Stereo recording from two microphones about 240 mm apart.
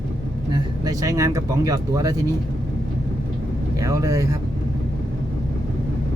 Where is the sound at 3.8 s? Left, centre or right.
Centre.